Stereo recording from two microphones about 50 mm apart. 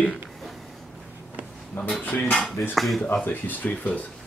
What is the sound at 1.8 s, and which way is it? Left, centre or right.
Speech, left.